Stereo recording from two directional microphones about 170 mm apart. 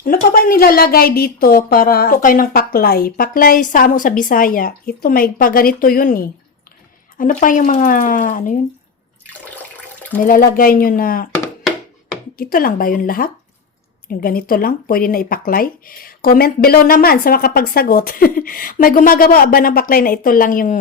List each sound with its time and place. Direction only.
0.0 s speech: 60° left (ahead or behind)
10.2 s speech: 55° left (ahead or behind)
12.4 s speech: 55° left (ahead or behind)